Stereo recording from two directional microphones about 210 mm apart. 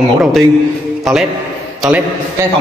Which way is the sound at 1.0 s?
Centre (ahead or behind).